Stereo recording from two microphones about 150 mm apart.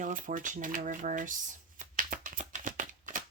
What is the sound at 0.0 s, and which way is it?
Shuffling cards, 60° right (ahead or behind).